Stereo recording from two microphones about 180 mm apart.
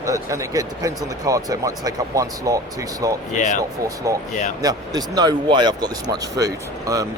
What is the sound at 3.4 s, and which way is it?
Speech, 45° left (ahead or behind).